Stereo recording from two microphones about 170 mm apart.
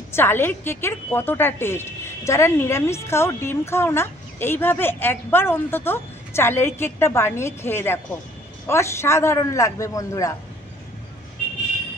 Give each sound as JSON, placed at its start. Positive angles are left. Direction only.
{"t": 0.1, "sound": "a woman's voice", "side_deg": 15}